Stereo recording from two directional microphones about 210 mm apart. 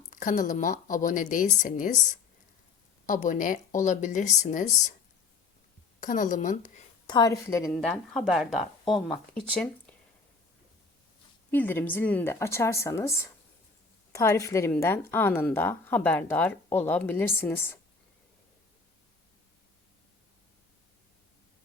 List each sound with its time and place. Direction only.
0.1 s a woman's voice: 40° left (ahead or behind)
6.0 s speech: 35° left (ahead or behind)
7.1 s a woman's voice: 15° left (ahead or behind)
7.7 s speech: 5° left (ahead or behind)
11.5 s a woman's voice: 10° left (ahead or behind)